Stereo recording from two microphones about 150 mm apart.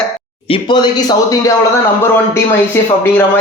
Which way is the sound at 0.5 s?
30° left (ahead or behind).